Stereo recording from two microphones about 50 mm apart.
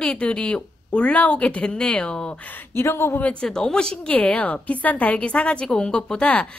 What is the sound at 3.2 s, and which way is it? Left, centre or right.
Speech, left.